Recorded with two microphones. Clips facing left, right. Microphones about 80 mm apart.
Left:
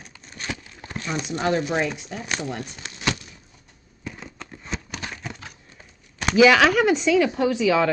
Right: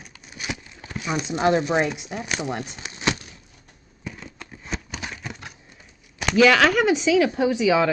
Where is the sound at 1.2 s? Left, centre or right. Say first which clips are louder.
Right 3 dB; right.